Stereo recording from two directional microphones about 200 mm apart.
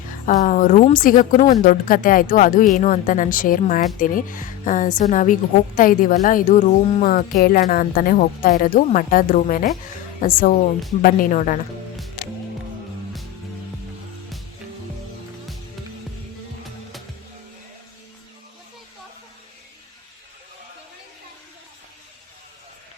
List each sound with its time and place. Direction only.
0.3 s a woman's voice: 40° left (ahead or behind)